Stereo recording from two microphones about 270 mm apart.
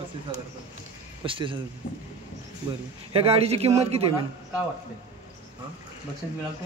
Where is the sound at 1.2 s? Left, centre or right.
Centre.